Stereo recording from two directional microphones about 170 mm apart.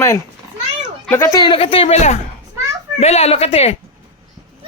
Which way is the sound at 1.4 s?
30° left (ahead or behind).